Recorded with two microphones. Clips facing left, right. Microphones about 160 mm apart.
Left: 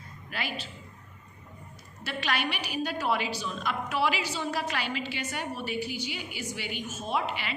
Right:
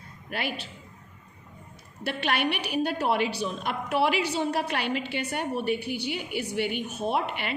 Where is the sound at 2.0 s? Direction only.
60° right (ahead or behind).